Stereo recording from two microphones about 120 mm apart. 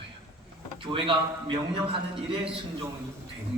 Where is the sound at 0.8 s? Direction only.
45° right (ahead or behind).